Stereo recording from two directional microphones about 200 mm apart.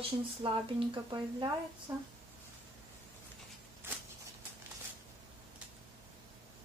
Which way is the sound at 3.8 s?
10° right (ahead or behind).